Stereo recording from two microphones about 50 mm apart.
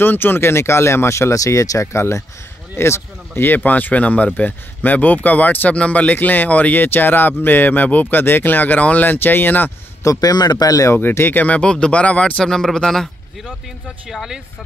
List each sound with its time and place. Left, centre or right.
0.0 s speech: left
10.0 s a man's voice: left
11.0 s speech: left
11.4 s a man's voice: left; by 13.6 s centre
14.0 s speech: centre